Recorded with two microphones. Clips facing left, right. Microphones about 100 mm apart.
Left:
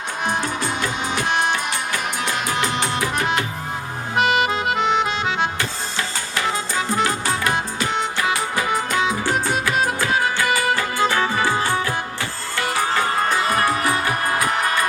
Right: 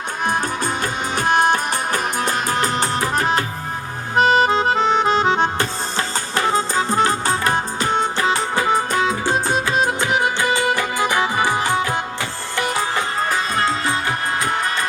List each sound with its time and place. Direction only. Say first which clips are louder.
0.3 s music: right 2 dB; 45° right (ahead or behind)
4.1 s accordion: right 4 dB; 35° right (ahead or behind)
9.2 s music: right 2 dB; 25° right (ahead or behind)